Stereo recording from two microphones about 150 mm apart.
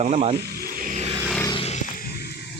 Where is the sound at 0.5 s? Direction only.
70° right (ahead or behind).